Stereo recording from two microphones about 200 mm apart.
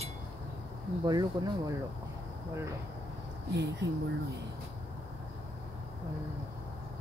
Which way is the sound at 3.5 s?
60° right (ahead or behind).